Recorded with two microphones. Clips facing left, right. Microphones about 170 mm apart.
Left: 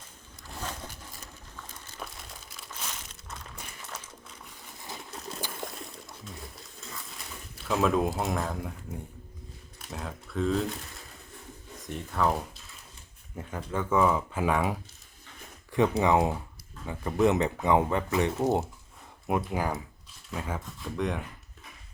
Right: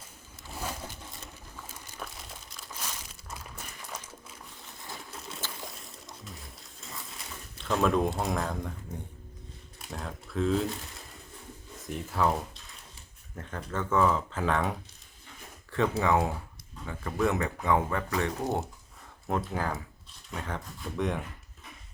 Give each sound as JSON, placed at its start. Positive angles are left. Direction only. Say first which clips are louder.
{"t": 0.4, "sound": "a sound", "louder": "right 1 dB", "side_deg": -5}
{"t": 4.8, "sound": "vehicle", "louder": "left 2 dB", "side_deg": 0}
{"t": 5.6, "sound": "a sound", "louder": "left 5 dB", "side_deg": 0}
{"t": 6.2, "sound": "wild animals", "louder": "left 3 dB", "side_deg": 0}
{"t": 7.6, "sound": "speech", "louder": "even", "side_deg": 0}
{"t": 9.8, "sound": "a sound", "louder": "left 1 dB", "side_deg": 0}
{"t": 11.8, "sound": "speech", "louder": "even", "side_deg": 0}
{"t": 19.5, "sound": "speech", "louder": "left 2 dB", "side_deg": 15}
{"t": 20.3, "sound": "speech", "louder": "left 2 dB", "side_deg": 0}